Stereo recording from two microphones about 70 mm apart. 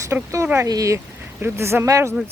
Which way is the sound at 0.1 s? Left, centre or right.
Right.